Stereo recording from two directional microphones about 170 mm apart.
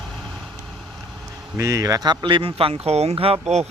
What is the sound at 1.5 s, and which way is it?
Speech, 20° right (ahead or behind).